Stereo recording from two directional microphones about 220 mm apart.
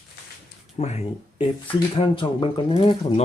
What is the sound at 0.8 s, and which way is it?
Speech, 30° left (ahead or behind).